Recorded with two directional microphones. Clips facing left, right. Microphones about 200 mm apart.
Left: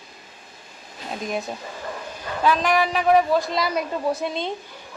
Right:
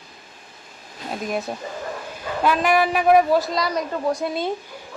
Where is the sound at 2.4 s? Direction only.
10° right (ahead or behind).